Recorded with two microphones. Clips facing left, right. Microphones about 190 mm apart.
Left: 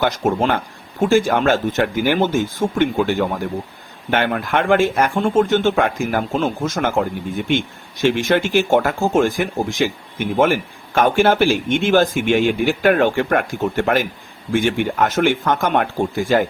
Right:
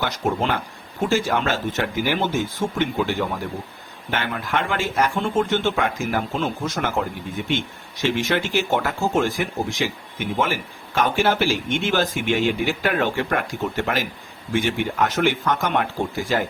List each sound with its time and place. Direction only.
0.0 s speech: 55° left (ahead or behind)